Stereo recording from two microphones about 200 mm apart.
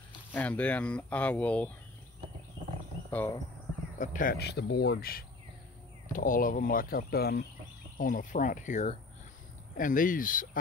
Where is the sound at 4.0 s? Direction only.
45° left (ahead or behind).